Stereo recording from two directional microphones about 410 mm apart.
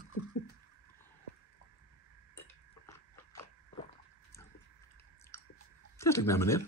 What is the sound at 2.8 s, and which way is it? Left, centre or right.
Biting, centre.